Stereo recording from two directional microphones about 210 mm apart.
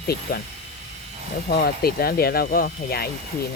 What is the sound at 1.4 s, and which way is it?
Speech, 45° left (ahead or behind).